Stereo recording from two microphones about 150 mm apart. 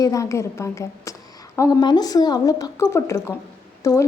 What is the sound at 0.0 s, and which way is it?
Speech, 20° left (ahead or behind).